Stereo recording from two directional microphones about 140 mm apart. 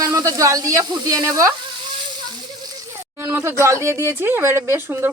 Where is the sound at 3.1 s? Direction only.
15° right (ahead or behind).